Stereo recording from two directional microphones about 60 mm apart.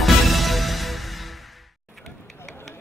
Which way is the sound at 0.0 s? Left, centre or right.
Centre.